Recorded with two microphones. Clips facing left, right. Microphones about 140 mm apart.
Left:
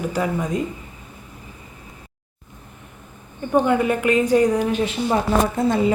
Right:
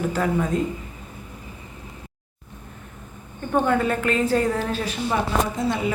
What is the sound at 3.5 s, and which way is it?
A woman's voice, 15° left (ahead or behind).